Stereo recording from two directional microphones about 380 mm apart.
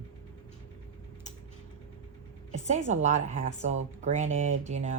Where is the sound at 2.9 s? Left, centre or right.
Centre.